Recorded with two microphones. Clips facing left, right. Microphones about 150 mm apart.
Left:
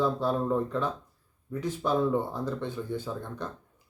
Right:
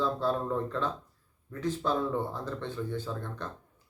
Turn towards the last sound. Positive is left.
turn(degrees=15)  # may be behind; listen again after turning